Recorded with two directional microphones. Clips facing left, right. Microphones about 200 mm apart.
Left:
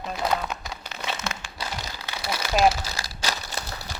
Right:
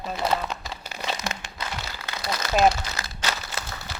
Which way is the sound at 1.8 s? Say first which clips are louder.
Even; 15° left (ahead or behind).